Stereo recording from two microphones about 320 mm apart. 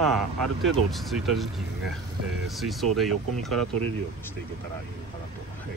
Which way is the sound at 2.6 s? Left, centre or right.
Centre.